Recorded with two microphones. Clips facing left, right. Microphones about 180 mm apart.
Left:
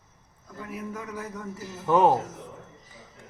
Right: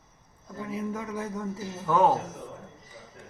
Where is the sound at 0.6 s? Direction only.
25° right (ahead or behind).